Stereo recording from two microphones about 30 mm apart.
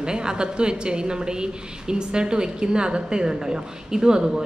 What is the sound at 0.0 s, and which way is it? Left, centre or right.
A woman's voice, right.